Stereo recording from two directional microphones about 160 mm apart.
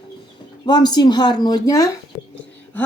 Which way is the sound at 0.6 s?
25° left (ahead or behind).